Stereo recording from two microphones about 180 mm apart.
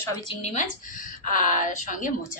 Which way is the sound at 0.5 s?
45° left (ahead or behind).